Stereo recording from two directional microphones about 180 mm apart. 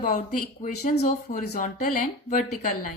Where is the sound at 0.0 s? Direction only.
45° left (ahead or behind).